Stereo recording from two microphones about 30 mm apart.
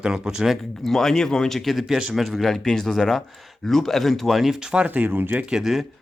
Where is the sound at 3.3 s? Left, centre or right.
Centre.